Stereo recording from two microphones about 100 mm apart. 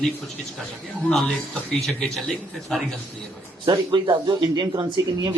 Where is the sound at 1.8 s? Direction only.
5° left (ahead or behind).